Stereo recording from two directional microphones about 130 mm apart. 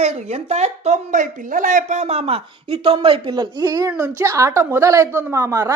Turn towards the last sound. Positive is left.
turn(degrees=-25)  # may be behind; listen again after turning